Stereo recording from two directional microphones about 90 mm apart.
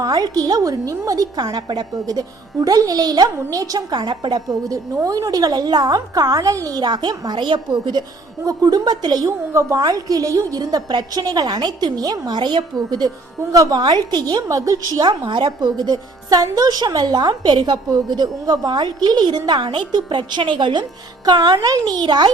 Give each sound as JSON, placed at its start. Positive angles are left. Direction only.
{"t": 0.0, "sound": "a woman's voice", "side_deg": -45}
{"t": 8.4, "sound": "a woman's voice", "side_deg": -45}
{"t": 9.5, "sound": "a woman's voice", "side_deg": -35}
{"t": 13.5, "sound": "a woman's voice", "side_deg": -40}
{"t": 14.4, "sound": "a woman's voice", "side_deg": -40}
{"t": 15.3, "sound": "a woman's voice", "side_deg": -60}